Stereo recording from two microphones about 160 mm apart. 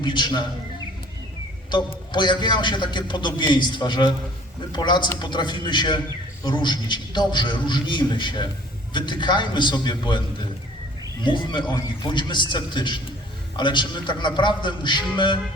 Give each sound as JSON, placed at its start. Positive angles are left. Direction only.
{"t": 0.0, "sound": "a man's voice", "side_deg": 30}
{"t": 1.7, "sound": "a man's voice", "side_deg": 30}